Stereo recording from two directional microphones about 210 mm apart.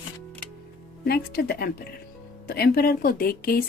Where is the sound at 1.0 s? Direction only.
45° left (ahead or behind).